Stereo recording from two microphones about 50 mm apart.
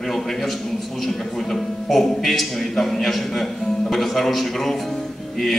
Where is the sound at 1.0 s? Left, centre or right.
Centre.